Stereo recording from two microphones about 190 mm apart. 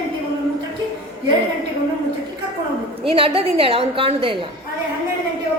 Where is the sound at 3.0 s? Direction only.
30° right (ahead or behind).